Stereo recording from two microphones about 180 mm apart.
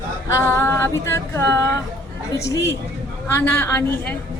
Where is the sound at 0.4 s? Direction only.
15° left (ahead or behind).